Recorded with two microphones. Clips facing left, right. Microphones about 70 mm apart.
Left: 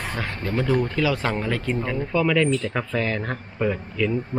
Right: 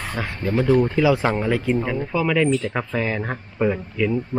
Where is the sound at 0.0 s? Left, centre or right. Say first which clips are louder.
Right 2 dB; centre.